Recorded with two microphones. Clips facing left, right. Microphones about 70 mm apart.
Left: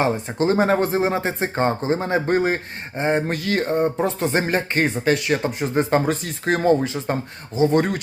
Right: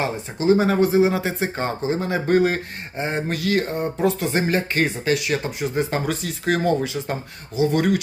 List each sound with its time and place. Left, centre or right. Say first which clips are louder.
0.0 s speech: left 2 dB; left